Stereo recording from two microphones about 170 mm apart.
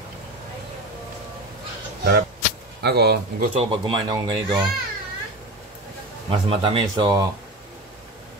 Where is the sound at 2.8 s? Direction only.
70° right (ahead or behind).